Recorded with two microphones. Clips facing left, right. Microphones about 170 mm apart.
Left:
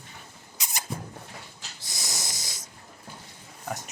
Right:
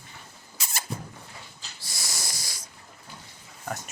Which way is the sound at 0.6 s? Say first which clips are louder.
Even; 20° left (ahead or behind).